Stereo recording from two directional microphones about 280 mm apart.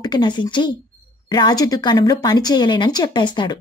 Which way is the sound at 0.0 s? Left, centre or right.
Centre.